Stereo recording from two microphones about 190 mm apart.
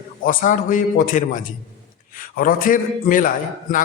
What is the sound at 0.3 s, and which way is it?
A man's voice, 45° left (ahead or behind).